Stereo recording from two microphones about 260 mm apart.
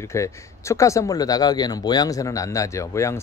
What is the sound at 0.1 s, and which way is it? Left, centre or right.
Speech, centre.